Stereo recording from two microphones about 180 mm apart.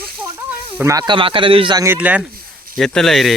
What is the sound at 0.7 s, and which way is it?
Speech, 20° right (ahead or behind).